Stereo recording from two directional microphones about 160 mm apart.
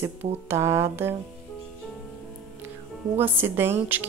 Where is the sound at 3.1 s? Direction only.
15° right (ahead or behind).